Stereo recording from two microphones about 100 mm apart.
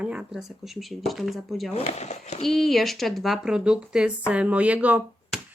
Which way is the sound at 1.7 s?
90° left.